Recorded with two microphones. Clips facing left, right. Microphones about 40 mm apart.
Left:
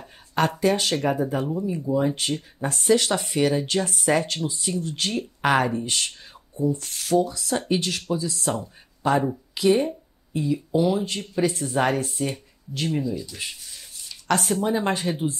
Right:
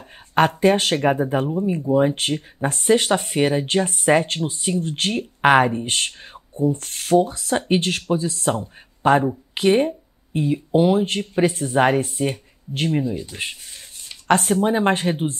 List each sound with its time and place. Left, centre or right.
0.3 s speech: right